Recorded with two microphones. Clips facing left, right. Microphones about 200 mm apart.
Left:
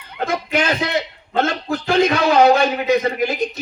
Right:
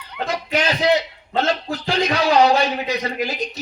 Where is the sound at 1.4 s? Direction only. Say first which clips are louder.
Left 1 dB; 50° left (ahead or behind).